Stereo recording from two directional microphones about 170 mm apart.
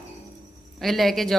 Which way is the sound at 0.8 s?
Centre (ahead or behind).